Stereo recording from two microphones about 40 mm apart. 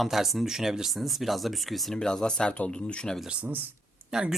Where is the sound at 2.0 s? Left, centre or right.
Centre.